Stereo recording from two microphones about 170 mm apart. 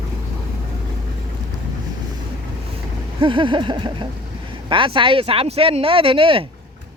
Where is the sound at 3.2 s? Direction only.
30° right (ahead or behind).